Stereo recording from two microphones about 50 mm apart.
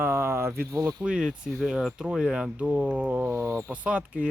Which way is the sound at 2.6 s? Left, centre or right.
Right.